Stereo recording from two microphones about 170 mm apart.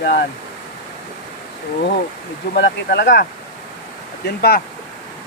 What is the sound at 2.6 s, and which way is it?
Speech, 85° left.